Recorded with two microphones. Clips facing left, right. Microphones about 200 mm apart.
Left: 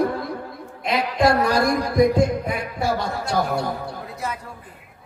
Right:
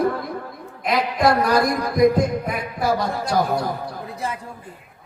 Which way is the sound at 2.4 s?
25° left (ahead or behind).